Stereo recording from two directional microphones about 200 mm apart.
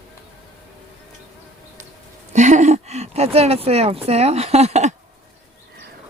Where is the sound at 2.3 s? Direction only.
35° right (ahead or behind).